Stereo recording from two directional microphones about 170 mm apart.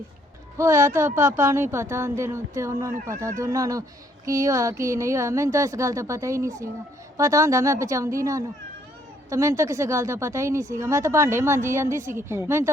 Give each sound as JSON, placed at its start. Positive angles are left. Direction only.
{"t": 0.5, "sound": "speech", "side_deg": -15}